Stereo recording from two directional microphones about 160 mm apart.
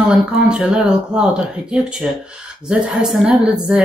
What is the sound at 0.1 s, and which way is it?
Speech, 5° right (ahead or behind).